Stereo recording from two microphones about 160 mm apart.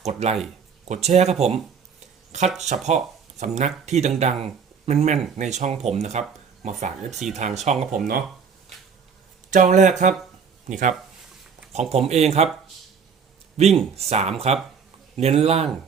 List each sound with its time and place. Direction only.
0.0 s speech: 40° right (ahead or behind)
9.5 s speech: 50° right (ahead or behind)
11.7 s speech: 45° right (ahead or behind)
13.6 s speech: 40° right (ahead or behind)